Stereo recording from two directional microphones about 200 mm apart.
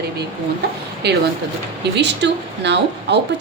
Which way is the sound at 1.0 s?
55° right (ahead or behind).